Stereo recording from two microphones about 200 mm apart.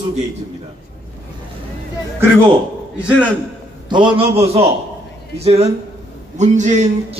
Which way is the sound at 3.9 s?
25° right (ahead or behind).